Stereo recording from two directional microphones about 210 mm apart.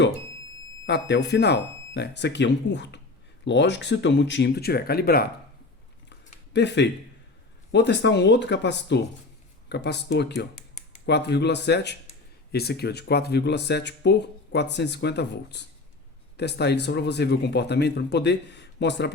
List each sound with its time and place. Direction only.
0.9 s speech: 55° left (ahead or behind)
6.1 s a sound: 55° left (ahead or behind)
7.7 s speech: 55° left (ahead or behind)